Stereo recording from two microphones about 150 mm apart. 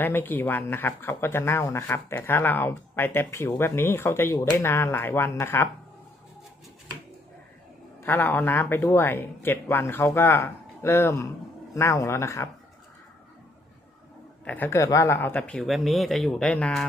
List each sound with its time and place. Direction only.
0.0 s speech: 15° left (ahead or behind)
8.0 s speech: 15° left (ahead or behind)
14.4 s speech: 10° left (ahead or behind)